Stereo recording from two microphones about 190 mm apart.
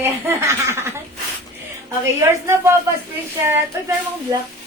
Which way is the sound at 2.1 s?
15° right (ahead or behind).